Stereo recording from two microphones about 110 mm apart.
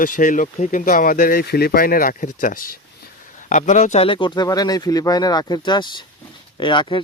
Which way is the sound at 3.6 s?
90° left.